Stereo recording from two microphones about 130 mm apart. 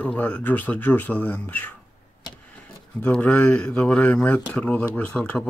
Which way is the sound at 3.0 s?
10° left (ahead or behind).